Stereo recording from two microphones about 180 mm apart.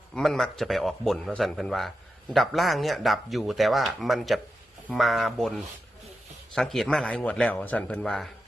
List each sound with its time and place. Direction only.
0.1 s speech: centre (ahead or behind)